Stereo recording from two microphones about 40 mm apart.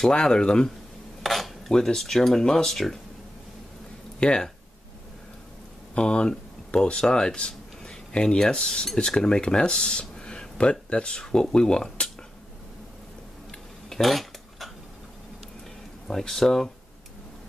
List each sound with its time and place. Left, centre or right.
0.1 s speech: left
1.2 s cutlery: centre
1.7 s speech: centre
4.2 s speech: left
5.9 s speech: left
8.5 s cutlery: left
11.5 s speech: centre
13.5 s cutlery: centre
16.1 s speech: centre